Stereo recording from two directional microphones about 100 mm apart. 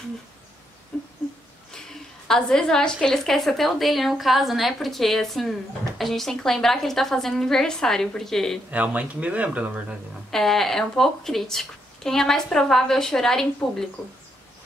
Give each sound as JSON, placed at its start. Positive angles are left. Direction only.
{"t": 0.9, "sound": "a sound", "side_deg": 10}
{"t": 2.2, "sound": "a woman's voice", "side_deg": 5}
{"t": 8.6, "sound": "speech", "side_deg": -15}
{"t": 10.3, "sound": "a woman's voice", "side_deg": 5}